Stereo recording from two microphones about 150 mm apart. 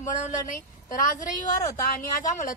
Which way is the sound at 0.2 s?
60° left (ahead or behind).